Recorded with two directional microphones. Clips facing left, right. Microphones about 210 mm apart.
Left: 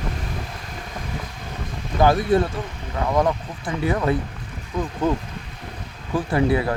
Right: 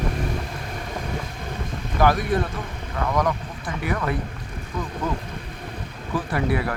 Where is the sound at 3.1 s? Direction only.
25° left (ahead or behind).